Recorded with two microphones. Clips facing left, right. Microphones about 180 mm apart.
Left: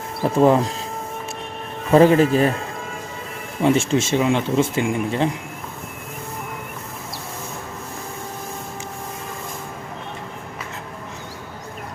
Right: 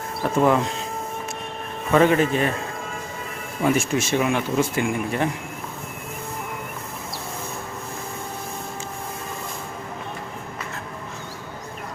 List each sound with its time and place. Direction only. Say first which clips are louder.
0.3 s speech: left 4 dB; 30° left (ahead or behind)
1.9 s speech: left 4 dB; 35° left (ahead or behind)
3.6 s speech: left 3 dB; 25° left (ahead or behind)